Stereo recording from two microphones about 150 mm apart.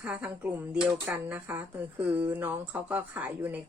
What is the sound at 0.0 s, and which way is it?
Speech, 10° right (ahead or behind).